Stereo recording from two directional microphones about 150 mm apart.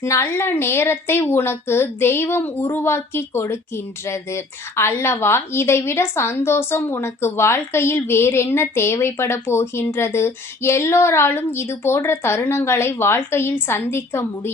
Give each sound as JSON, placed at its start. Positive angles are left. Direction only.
{"t": 0.0, "sound": "a woman's voice", "side_deg": 15}